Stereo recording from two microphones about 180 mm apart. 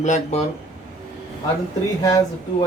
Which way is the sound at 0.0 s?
40° left (ahead or behind).